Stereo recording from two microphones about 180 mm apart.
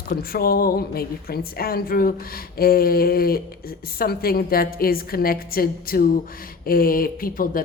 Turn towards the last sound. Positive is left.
turn(degrees=50)  # may be behind; listen again after turning